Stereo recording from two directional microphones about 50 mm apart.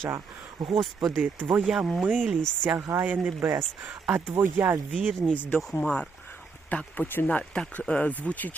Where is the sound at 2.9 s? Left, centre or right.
Right.